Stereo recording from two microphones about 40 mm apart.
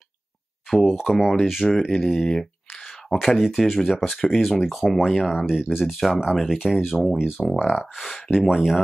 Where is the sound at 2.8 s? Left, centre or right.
Centre.